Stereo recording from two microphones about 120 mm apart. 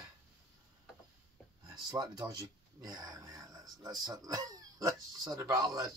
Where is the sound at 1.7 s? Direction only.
35° right (ahead or behind).